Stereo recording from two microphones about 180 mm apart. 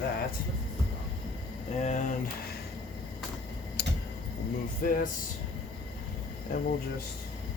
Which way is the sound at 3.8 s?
65° left (ahead or behind).